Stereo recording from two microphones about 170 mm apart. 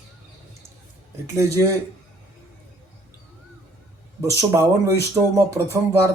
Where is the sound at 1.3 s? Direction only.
15° right (ahead or behind).